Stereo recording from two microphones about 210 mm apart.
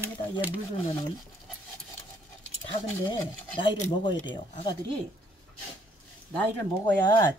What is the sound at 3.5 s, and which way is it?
Speech, 25° left (ahead or behind).